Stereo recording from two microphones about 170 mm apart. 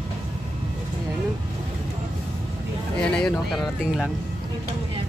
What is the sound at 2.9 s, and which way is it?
Speech, 5° left (ahead or behind).